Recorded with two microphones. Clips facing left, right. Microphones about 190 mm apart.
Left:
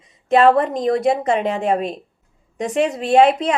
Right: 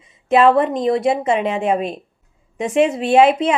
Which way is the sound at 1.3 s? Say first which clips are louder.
Right 1 dB; 35° left (ahead or behind).